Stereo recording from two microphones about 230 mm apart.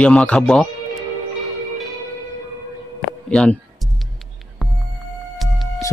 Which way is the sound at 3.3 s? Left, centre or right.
Centre.